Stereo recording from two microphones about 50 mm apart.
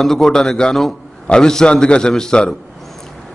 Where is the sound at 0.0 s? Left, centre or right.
Centre.